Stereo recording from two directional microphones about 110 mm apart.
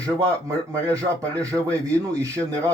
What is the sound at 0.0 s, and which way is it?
A man's voice, 30° right (ahead or behind).